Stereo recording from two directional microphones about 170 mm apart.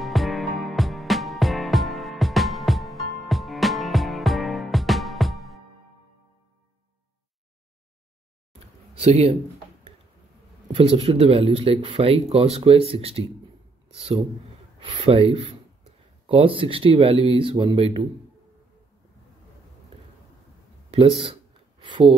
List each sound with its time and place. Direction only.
0.0 s music: centre (ahead or behind)
8.9 s speech: 35° right (ahead or behind)
10.7 s speech: 35° right (ahead or behind)
20.9 s a sound: 35° right (ahead or behind)